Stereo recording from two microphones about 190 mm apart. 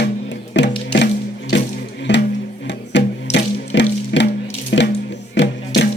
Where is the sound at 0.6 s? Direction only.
70° left (ahead or behind).